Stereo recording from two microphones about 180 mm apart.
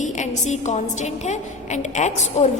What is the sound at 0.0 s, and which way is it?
A woman's voice, 40° left (ahead or behind).